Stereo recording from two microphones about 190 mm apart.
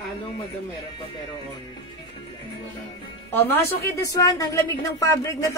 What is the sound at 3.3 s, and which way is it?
A woman's voice, 10° left (ahead or behind).